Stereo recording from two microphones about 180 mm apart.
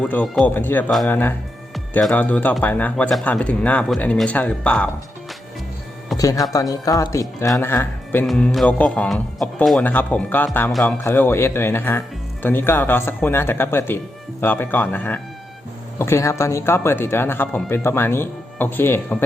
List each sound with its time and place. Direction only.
0.0 s speech: 5° left (ahead or behind)
6.1 s speech: 20° left (ahead or behind)